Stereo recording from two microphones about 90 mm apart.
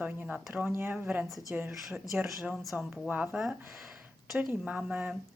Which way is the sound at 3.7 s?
5° right (ahead or behind).